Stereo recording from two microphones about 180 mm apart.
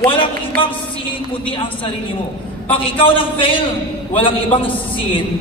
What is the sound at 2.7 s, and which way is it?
A man's voice, 30° left (ahead or behind).